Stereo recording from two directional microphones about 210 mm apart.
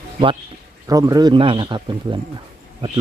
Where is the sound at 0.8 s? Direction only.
15° right (ahead or behind).